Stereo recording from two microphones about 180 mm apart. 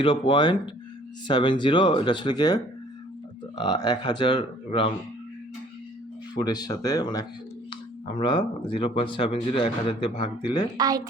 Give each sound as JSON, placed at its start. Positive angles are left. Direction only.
{"t": 0.0, "sound": "speech", "side_deg": 30}
{"t": 3.6, "sound": "speech", "side_deg": 25}
{"t": 6.3, "sound": "speech", "side_deg": 20}
{"t": 10.8, "sound": "speech", "side_deg": -20}